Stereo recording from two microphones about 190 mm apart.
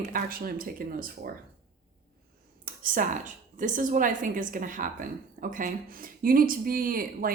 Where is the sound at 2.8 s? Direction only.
45° right (ahead or behind).